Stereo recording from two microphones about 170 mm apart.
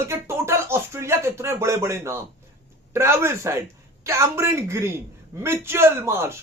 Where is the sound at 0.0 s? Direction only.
15° right (ahead or behind).